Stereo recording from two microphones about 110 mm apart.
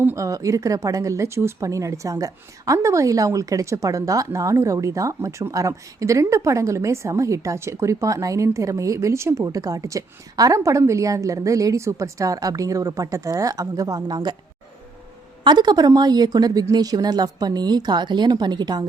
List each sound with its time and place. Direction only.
0.0 s speech: 20° right (ahead or behind)
0.3 s speech: 30° right (ahead or behind)
15.4 s a woman's voice: 40° right (ahead or behind)